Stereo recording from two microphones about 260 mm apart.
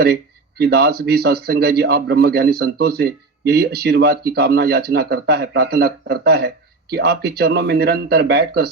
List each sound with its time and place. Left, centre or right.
0.6 s a man's voice: right